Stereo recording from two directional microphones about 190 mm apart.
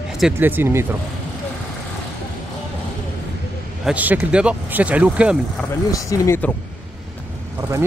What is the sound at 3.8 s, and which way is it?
Speech, 10° right (ahead or behind).